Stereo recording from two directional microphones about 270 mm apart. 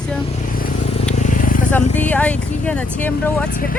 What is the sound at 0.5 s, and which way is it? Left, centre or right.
Vehicle, left.